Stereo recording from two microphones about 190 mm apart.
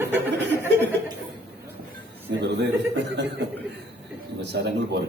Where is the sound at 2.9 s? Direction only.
65° right (ahead or behind).